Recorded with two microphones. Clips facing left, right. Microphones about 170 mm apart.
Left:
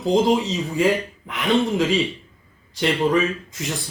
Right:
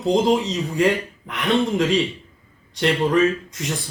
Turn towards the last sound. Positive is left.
turn(degrees=0)  # may be behind; listen again after turning